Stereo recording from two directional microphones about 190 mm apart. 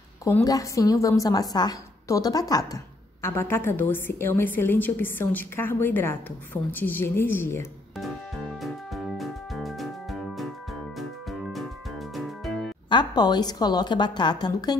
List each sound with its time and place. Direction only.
0.2 s a woman's voice: 15° left (ahead or behind)
8.5 s music: centre (ahead or behind)
12.9 s a woman's voice: 20° left (ahead or behind)